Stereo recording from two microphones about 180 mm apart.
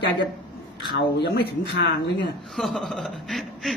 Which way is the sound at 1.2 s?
65° left (ahead or behind).